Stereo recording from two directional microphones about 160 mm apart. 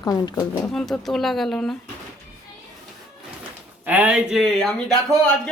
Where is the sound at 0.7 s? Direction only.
Centre (ahead or behind).